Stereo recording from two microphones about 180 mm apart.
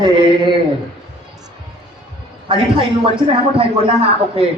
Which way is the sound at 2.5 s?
30° right (ahead or behind).